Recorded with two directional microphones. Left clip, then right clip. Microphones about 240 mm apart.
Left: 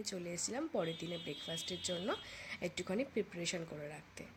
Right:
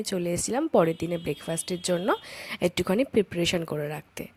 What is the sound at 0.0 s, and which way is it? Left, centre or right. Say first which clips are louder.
A woman's voice: right 14 dB; right.